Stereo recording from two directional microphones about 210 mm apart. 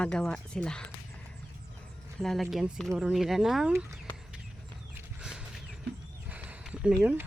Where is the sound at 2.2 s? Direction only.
Centre (ahead or behind).